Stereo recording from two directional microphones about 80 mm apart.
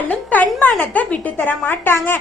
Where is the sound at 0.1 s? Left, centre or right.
Centre.